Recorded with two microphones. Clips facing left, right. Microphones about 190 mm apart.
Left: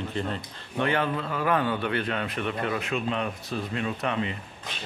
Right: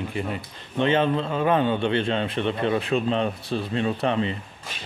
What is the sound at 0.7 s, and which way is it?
A man's voice, 25° right (ahead or behind).